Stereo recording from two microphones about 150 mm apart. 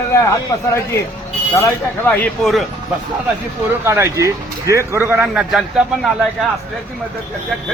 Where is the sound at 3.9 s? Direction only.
20° right (ahead or behind); by 6.1 s centre (ahead or behind).